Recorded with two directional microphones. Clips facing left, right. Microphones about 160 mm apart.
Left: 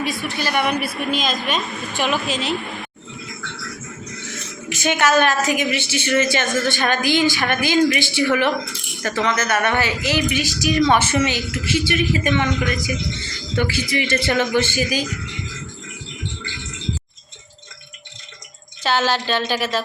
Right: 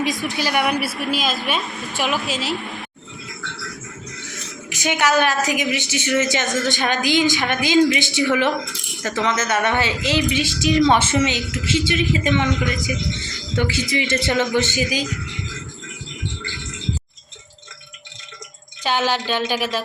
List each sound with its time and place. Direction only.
0.0 s a woman's voice: 15° right (ahead or behind)
4.7 s a woman's voice: 15° right (ahead or behind)
13.6 s a woman's voice: 20° right (ahead or behind)
18.8 s a woman's voice: 15° right (ahead or behind)